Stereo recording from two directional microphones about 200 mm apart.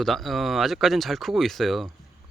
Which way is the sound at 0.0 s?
Centre (ahead or behind).